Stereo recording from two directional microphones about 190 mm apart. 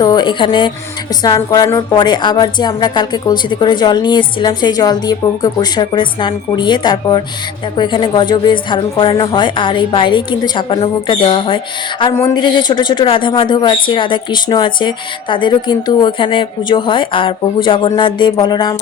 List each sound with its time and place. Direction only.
0.0 s a woman's voice: 20° left (ahead or behind)